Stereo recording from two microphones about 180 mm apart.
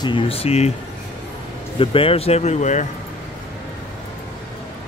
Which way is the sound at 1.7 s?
30° left (ahead or behind).